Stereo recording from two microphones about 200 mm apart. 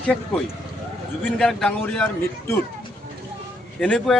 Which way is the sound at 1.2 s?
5° left (ahead or behind).